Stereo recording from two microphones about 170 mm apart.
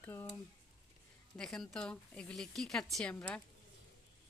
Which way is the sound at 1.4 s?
5° left (ahead or behind).